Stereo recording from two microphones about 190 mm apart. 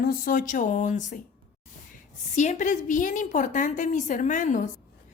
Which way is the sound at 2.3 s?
40° left (ahead or behind).